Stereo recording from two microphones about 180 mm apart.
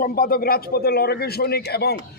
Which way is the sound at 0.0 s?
55° left (ahead or behind).